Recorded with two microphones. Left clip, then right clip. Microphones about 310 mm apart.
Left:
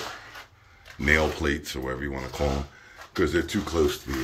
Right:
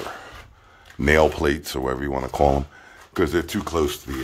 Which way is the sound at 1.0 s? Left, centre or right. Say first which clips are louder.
Right 5 dB; centre.